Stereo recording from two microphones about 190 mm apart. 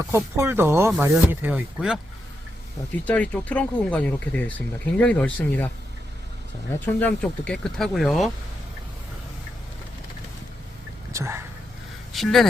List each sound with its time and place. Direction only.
0.1 s speech: 15° right (ahead or behind)
3.0 s speech: 5° left (ahead or behind)
6.7 s speech: 10° left (ahead or behind)
11.1 s speech: 15° right (ahead or behind)
12.1 s speech: centre (ahead or behind)